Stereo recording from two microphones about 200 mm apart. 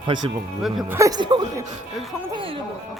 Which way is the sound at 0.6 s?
15° right (ahead or behind).